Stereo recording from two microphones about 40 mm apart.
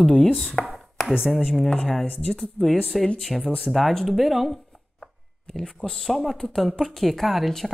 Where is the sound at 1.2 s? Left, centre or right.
Centre.